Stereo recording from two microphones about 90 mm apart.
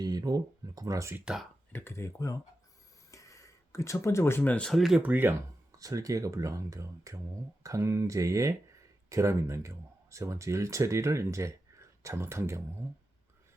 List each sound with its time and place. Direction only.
0.0 s speech: 45° right (ahead or behind)
1.2 s speech: 5° right (ahead or behind)
1.7 s speech: 25° left (ahead or behind)
3.1 s a sound: 35° left (ahead or behind)
4.5 s speech: 10° left (ahead or behind)
4.8 s speech: 5° right (ahead or behind)
5.0 s speech: 20° right (ahead or behind)
5.7 s speech: 40° right (ahead or behind)